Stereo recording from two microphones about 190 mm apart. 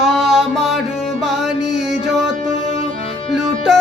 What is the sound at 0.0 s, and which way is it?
Music, centre (ahead or behind).